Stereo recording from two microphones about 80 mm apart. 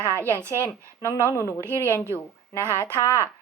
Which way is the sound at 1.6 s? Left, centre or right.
Right.